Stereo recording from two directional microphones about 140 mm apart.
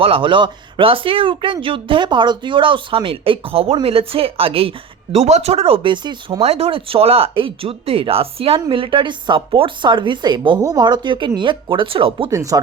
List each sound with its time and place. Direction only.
0.0 s speech: 40° right (ahead or behind)
6.4 s speech: 45° right (ahead or behind)
12.3 s speech: 25° right (ahead or behind)